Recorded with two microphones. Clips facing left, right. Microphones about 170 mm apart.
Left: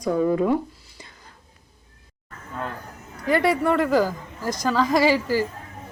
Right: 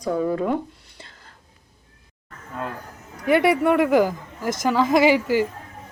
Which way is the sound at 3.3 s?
20° right (ahead or behind).